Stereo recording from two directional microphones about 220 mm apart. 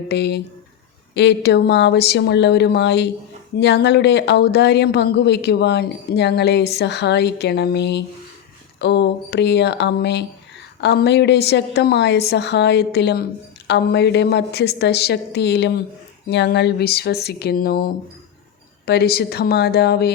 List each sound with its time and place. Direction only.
0.1 s a woman's voice: 50° left (ahead or behind)